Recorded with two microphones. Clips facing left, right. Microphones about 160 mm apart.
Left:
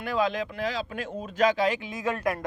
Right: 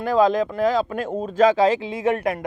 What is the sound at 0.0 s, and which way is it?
Speech, 40° right (ahead or behind).